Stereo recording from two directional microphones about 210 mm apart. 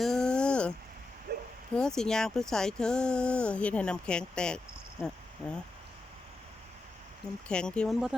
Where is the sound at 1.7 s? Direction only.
5° left (ahead or behind).